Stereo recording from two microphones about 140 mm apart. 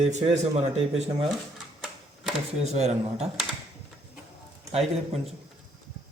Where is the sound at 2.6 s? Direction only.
50° right (ahead or behind).